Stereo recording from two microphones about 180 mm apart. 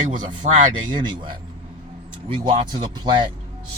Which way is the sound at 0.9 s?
25° right (ahead or behind).